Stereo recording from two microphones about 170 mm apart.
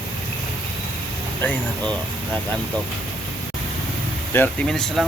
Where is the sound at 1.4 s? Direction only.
10° left (ahead or behind).